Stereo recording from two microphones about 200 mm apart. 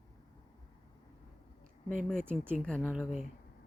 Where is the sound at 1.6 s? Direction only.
40° right (ahead or behind).